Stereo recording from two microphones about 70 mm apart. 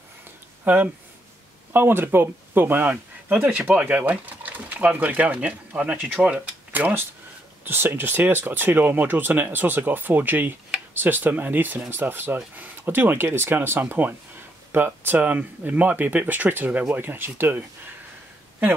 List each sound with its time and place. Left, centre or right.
0.7 s speech: right
6.2 s speech: centre
6.7 s speech: right